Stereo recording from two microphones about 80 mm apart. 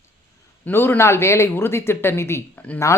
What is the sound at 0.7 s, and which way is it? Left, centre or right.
A woman's voice, left.